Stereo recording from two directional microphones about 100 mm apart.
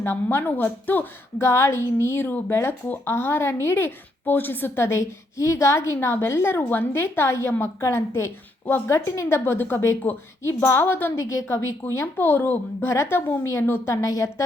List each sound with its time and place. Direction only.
0.0 s a woman's voice: 20° left (ahead or behind)